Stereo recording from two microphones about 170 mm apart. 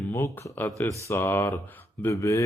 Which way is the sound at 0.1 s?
15° left (ahead or behind).